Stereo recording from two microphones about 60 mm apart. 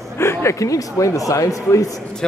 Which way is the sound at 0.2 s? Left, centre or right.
Left.